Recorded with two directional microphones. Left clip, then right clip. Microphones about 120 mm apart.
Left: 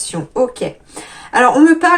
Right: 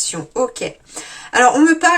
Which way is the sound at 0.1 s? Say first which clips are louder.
Left 7 dB; 30° right (ahead or behind).